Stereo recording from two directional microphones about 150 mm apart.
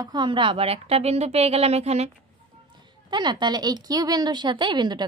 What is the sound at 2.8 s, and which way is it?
A woman's voice, 30° right (ahead or behind).